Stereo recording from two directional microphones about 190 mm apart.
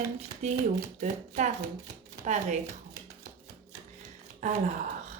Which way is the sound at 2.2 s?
35° right (ahead or behind).